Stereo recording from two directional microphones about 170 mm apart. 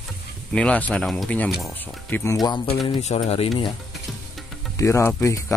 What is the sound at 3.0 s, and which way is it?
Speech, 40° left (ahead or behind).